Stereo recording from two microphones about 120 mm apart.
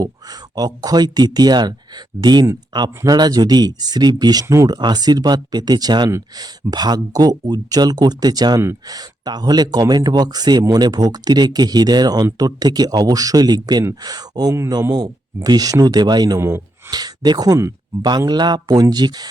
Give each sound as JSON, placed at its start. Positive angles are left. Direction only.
{"t": 0.0, "sound": "speech", "side_deg": -35}
{"t": 6.1, "sound": "speech", "side_deg": -25}
{"t": 6.4, "sound": "speech", "side_deg": -35}
{"t": 16.4, "sound": "speech", "side_deg": -20}
{"t": 16.9, "sound": "speech", "side_deg": -35}
{"t": 18.3, "sound": "speech", "side_deg": -35}